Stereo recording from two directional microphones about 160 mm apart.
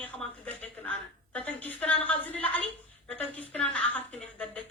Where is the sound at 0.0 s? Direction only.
10° left (ahead or behind).